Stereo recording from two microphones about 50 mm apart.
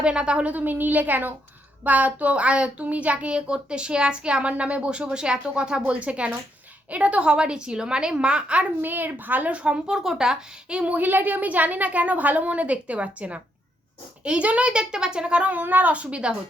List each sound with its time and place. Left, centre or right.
0.0 s a child's voice: centre
0.5 s a woman's voice: right
8.8 s a woman's voice: right
9.5 s a woman's voice: right
10.8 s a child's voice: right
15.6 s a child's voice: right